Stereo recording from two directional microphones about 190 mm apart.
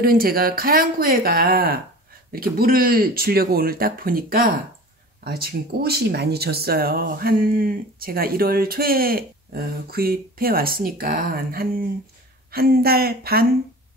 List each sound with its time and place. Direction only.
0.0 s speech: 50° right (ahead or behind)